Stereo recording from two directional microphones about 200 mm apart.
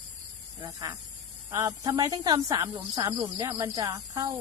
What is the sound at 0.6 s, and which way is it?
Speech, 20° right (ahead or behind).